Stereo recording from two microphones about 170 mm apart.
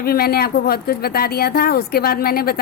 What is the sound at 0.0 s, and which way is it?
Speech, 65° left (ahead or behind).